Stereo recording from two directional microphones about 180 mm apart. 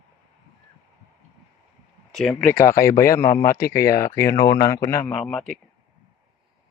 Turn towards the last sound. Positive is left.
turn(degrees=5)  # may be behind; listen again after turning